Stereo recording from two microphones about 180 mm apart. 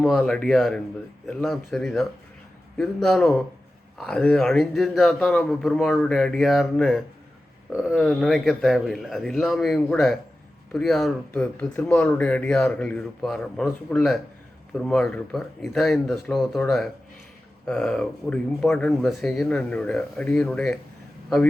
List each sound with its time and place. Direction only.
0.0 s speech: centre (ahead or behind)